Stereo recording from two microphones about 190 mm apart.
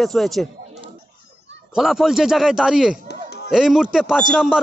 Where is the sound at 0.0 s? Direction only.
Centre (ahead or behind).